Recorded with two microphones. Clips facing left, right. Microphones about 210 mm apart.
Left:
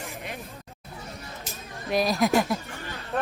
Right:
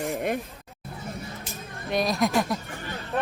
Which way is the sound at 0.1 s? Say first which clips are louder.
Right 11 dB; 50° right (ahead or behind).